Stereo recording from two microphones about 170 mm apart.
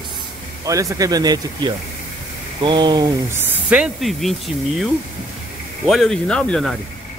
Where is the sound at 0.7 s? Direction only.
20° right (ahead or behind).